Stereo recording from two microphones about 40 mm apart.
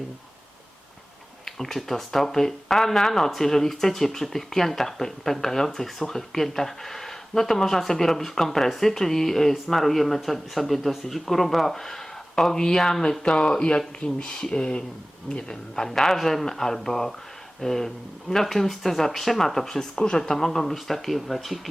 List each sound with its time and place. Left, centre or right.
1.5 s speech: centre